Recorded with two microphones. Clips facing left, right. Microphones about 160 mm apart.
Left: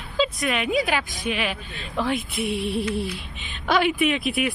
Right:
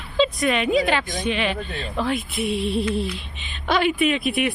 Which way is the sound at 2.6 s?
20° right (ahead or behind).